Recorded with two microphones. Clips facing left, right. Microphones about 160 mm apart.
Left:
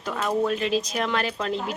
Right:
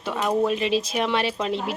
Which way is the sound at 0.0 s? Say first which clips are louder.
Right 2 dB; 5° right (ahead or behind).